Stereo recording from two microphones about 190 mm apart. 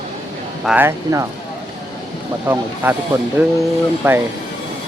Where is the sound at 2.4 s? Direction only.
10° right (ahead or behind).